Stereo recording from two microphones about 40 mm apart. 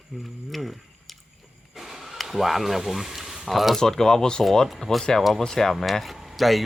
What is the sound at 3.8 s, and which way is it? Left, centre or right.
Speech, centre.